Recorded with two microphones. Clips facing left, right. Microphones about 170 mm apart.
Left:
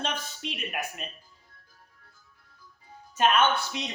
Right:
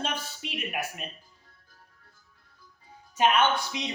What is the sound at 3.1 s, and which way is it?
Speech, 10° right (ahead or behind).